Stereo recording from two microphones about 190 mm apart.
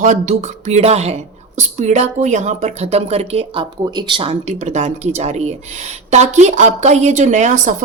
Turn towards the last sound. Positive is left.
turn(degrees=-40)  # may be behind; listen again after turning